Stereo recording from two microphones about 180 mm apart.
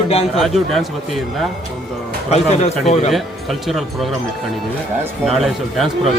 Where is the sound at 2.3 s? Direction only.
35° left (ahead or behind).